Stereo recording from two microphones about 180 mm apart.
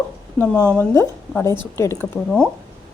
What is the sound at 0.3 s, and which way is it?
A woman's voice, 10° left (ahead or behind).